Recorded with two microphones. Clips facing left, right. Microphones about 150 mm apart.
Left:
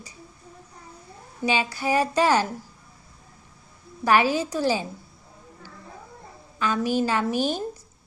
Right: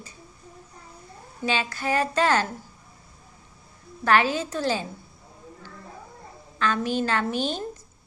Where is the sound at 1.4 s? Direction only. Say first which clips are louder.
Left 2 dB; 10° left (ahead or behind).